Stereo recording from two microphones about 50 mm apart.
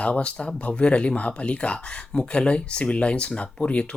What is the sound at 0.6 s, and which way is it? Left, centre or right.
Speech, left.